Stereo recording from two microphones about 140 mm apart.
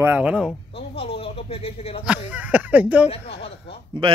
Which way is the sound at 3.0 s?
45° left (ahead or behind).